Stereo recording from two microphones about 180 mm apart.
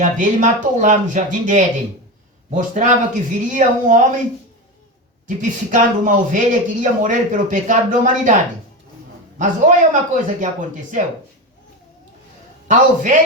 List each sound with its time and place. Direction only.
0.0 s speech: 45° right (ahead or behind)
5.4 s speech: 45° right (ahead or behind)
9.4 s speech: 45° right (ahead or behind)
12.6 s speech: 45° right (ahead or behind)